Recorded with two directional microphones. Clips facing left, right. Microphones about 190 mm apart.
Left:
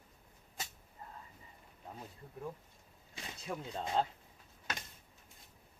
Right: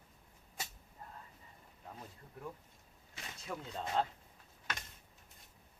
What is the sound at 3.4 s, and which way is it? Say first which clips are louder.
Speech: left 2 dB; 15° left (ahead or behind).